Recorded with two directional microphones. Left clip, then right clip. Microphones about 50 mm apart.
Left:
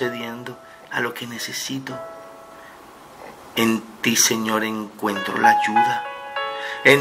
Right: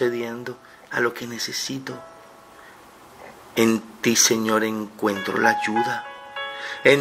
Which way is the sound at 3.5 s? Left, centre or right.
Right.